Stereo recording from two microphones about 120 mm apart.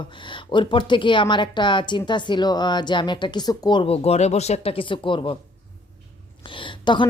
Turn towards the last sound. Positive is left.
turn(degrees=40)  # may be behind; listen again after turning